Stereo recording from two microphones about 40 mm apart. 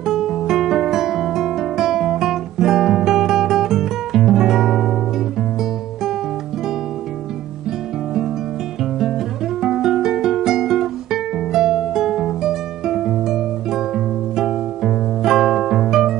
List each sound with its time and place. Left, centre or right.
0.0 s music: centre
9.6 s music: centre